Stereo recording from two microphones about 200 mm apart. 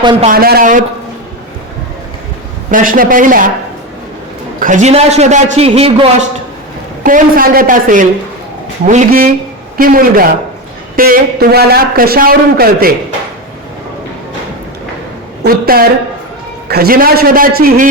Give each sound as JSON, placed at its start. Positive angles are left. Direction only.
{"t": 0.0, "sound": "a man's voice", "side_deg": -20}
{"t": 0.3, "sound": "a man's voice", "side_deg": -50}
{"t": 2.6, "sound": "a man's voice", "side_deg": -40}
{"t": 4.6, "sound": "a man's voice", "side_deg": -35}
{"t": 7.0, "sound": "a man's voice", "side_deg": -45}
{"t": 15.4, "sound": "a woman's voice", "side_deg": -50}